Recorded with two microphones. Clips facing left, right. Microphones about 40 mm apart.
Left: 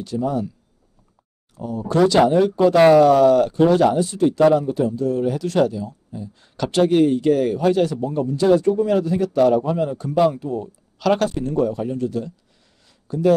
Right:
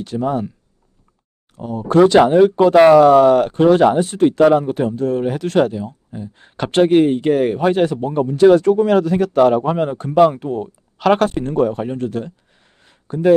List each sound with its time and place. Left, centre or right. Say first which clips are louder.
0.0 s speech: right 3 dB; right
1.5 s speech: right 5 dB; right
4.4 s speech: right 2 dB; right
4.6 s speech: right 2 dB; right
8.6 s speech: right 4 dB; right
12.8 s a sound: right 2 dB; right